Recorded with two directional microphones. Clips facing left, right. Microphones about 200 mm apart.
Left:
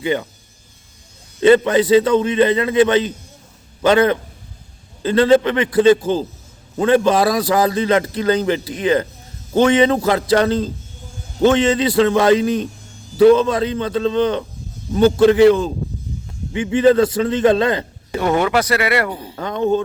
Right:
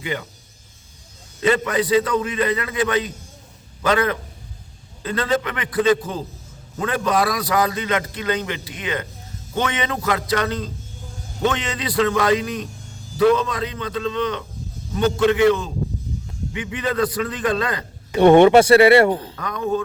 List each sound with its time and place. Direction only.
0.0 s a man's voice: 30° left (ahead or behind)
1.4 s a man's voice: 30° left (ahead or behind)
18.2 s speech: 30° right (ahead or behind)
19.1 s speech: 10° left (ahead or behind)
19.4 s a man's voice: 25° left (ahead or behind)